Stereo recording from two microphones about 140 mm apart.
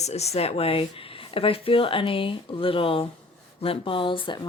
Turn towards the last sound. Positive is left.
turn(degrees=40)  # may be behind; listen again after turning